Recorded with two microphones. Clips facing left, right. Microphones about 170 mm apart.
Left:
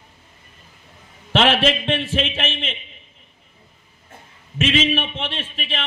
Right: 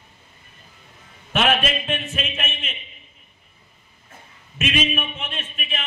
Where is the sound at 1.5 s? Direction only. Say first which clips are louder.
Left 4 dB; 90° left.